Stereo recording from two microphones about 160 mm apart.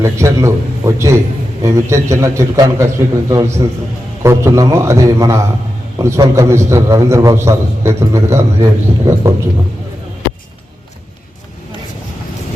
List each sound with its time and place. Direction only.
0.0 s a man's voice: 15° right (ahead or behind)